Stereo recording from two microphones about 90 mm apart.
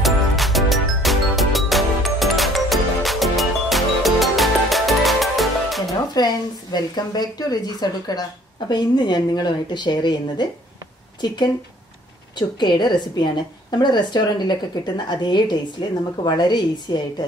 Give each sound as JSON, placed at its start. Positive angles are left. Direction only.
{"t": 0.0, "sound": "music", "side_deg": 0}
{"t": 6.1, "sound": "a woman's voice", "side_deg": 50}